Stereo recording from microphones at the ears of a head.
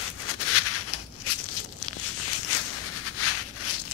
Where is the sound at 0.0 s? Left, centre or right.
Left.